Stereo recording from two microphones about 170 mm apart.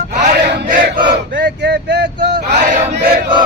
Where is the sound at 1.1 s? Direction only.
90° right.